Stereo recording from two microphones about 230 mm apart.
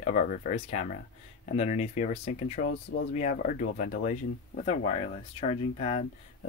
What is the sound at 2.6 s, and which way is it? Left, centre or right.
Speech, left.